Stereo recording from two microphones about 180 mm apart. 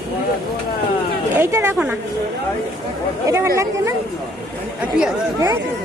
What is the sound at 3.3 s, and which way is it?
Speech, 15° right (ahead or behind).